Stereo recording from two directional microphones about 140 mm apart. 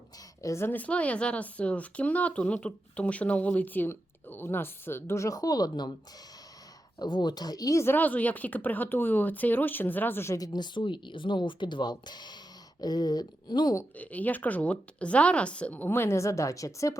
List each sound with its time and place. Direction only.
0.4 s speech: 20° left (ahead or behind)
7.0 s speech: 30° left (ahead or behind)
13.9 s speech: 10° left (ahead or behind)